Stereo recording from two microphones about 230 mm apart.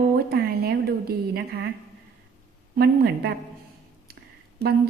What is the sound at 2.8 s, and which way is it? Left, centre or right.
Speech, right.